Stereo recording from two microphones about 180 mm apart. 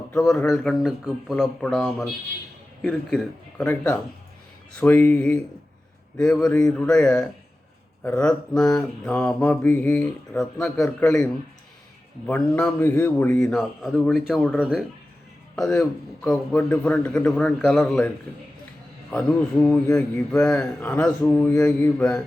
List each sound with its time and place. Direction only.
0.1 s mantra: 10° left (ahead or behind)
2.8 s a man's voice: centre (ahead or behind)
6.1 s mantra: 5° left (ahead or behind)
15.5 s a man's voice: centre (ahead or behind)
15.8 s mantra: 5° left (ahead or behind)
19.1 s a man's voice: 5° left (ahead or behind)